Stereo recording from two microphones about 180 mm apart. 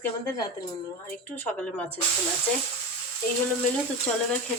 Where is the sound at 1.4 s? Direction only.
10° left (ahead or behind).